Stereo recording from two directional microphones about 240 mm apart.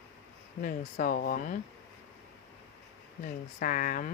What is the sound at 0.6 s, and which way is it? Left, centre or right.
Speech, left.